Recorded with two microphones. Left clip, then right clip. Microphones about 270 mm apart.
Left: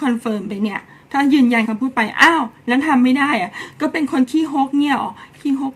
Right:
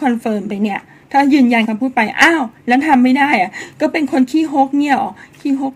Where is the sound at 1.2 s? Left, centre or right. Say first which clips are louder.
Right 3 dB; centre.